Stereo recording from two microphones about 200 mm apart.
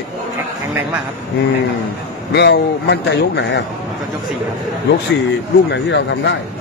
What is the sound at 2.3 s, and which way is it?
A man's voice, 55° left (ahead or behind).